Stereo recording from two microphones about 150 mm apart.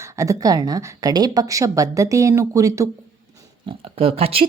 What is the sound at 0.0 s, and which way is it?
A woman's voice, 20° right (ahead or behind).